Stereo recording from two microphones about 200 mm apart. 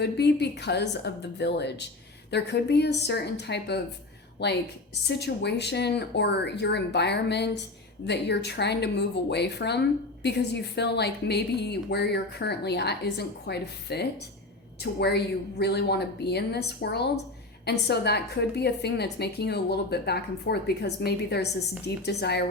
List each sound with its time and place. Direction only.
0.0 s a woman's voice: 55° left (ahead or behind)
5.0 s a woman's voice: 55° left (ahead or behind)